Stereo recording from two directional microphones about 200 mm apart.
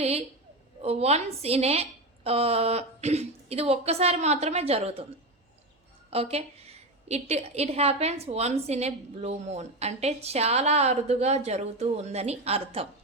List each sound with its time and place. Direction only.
0.0 s a woman's voice: 30° right (ahead or behind)
6.1 s a woman's voice: 30° right (ahead or behind)